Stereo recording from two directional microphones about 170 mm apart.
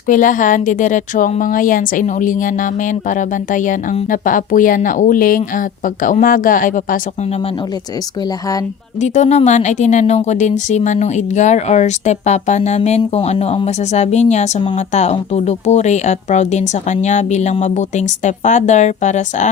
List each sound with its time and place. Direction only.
0.1 s a woman's voice: 50° left (ahead or behind)
9.0 s a woman's voice: 45° left (ahead or behind)